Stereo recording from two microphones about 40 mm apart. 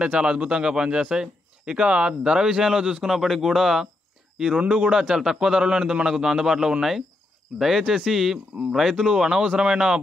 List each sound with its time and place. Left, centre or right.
0.0 s speech: right
3.1 s a man's voice: centre
4.6 s speech: right
5.1 s a man's voice: centre